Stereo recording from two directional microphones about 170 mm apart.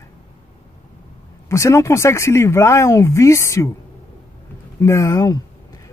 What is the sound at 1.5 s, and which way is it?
Speech, 15° left (ahead or behind).